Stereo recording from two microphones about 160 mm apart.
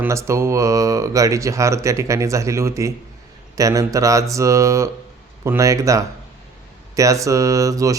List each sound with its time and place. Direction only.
0.0 s speech: 20° right (ahead or behind)